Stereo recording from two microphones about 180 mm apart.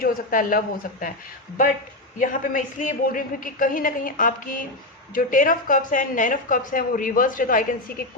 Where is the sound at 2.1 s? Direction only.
50° left (ahead or behind).